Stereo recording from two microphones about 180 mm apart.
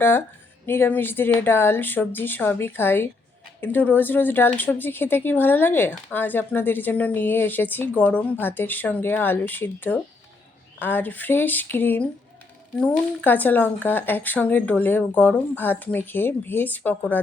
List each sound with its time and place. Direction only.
0.0 s speech: 10° left (ahead or behind)